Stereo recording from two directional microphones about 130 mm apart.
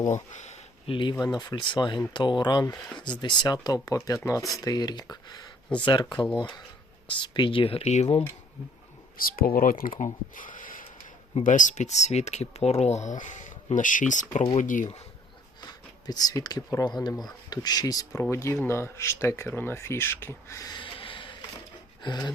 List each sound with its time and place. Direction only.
0.1 s speech: 65° left (ahead or behind)
0.9 s speech: 40° left (ahead or behind); by 8.2 s 60° left (ahead or behind)
9.2 s speech: 90° left; by 14.4 s 75° left (ahead or behind)
14.6 s speech: 90° left
15.6 s a sound: 30° left (ahead or behind)
16.7 s speech: 35° left (ahead or behind)
20.7 s a sound: 40° left (ahead or behind)
22.0 s speech: 35° left (ahead or behind)